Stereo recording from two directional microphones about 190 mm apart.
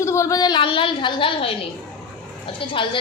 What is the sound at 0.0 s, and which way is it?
A woman's voice, 15° left (ahead or behind).